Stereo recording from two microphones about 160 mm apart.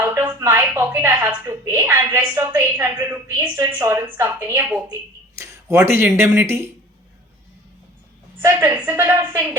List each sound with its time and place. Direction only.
0.0 s a woman's voice: 15° right (ahead or behind)
8.4 s a woman's voice: 15° right (ahead or behind)